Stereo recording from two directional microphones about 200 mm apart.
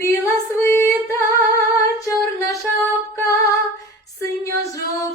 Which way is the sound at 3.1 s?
15° left (ahead or behind).